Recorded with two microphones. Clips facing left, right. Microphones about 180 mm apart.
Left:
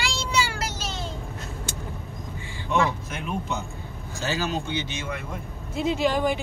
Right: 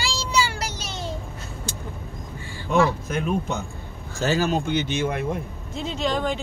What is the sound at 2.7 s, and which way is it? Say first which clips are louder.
A man's voice: right 4 dB; 40° right (ahead or behind).